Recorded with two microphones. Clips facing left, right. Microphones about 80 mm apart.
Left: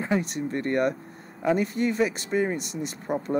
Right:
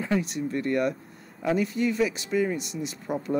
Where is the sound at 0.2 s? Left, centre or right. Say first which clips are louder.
Even; left.